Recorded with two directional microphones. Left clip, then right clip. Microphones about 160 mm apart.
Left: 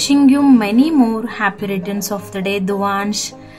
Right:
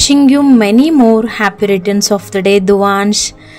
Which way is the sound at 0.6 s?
35° right (ahead or behind).